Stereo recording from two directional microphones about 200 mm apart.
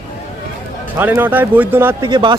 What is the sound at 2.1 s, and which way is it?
Speech, 25° right (ahead or behind).